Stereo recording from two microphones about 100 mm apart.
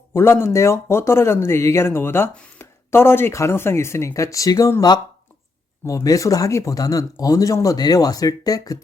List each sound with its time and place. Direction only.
0.1 s speech: 25° left (ahead or behind)
5.8 s speech: 35° left (ahead or behind)